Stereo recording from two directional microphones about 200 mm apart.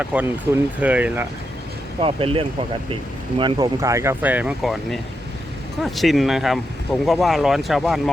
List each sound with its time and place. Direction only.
0.0 s speech: 5° right (ahead or behind)
2.0 s speech: 25° right (ahead or behind); by 8.1 s centre (ahead or behind)